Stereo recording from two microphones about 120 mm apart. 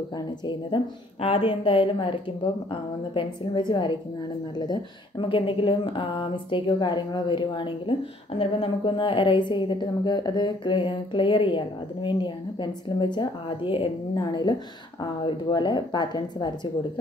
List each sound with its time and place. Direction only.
0.5 s a woman's voice: 40° left (ahead or behind)
5.3 s a woman's voice: 45° left (ahead or behind)